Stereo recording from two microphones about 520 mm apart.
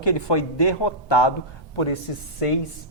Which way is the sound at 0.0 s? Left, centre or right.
Left.